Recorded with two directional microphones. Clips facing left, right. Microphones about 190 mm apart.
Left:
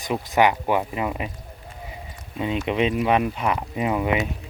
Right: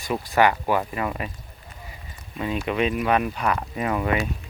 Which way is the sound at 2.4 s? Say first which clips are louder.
Left 2 dB; 20° left (ahead or behind).